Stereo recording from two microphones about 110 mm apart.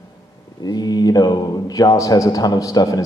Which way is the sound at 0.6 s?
35° left (ahead or behind).